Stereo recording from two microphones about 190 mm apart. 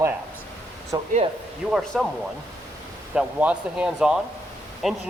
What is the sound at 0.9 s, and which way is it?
Speech, 20° right (ahead or behind).